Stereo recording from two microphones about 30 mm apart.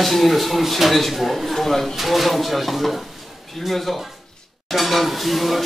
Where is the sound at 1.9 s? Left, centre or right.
Centre.